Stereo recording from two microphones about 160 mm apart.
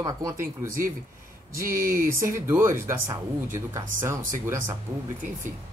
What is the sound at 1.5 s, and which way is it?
Speech, 60° right (ahead or behind).